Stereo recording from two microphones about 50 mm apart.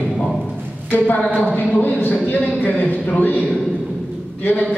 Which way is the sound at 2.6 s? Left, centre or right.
Left.